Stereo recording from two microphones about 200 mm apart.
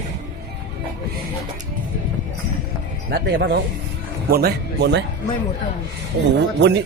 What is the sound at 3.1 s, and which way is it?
Speech, 55° right (ahead or behind).